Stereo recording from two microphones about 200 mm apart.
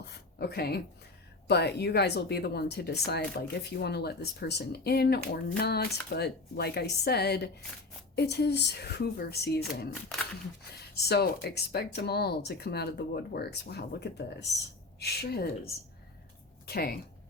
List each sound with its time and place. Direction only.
0.3 s speech: 55° left (ahead or behind)